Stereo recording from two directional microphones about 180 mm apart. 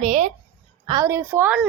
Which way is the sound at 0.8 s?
20° right (ahead or behind).